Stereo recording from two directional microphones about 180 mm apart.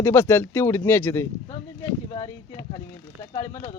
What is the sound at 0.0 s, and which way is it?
Speech, 15° left (ahead or behind).